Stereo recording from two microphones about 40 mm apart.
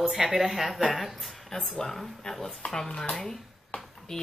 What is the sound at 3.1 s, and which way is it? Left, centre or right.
Speech, centre.